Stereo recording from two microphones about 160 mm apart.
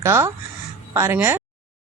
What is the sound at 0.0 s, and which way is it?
Speech, 15° right (ahead or behind).